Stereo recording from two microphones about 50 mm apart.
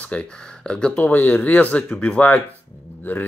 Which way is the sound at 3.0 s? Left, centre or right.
Left.